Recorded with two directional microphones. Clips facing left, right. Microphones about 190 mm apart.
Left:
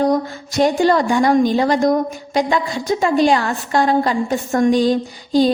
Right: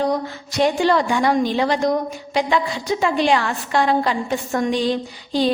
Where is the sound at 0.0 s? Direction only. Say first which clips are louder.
Left 4 dB; 45° left (ahead or behind).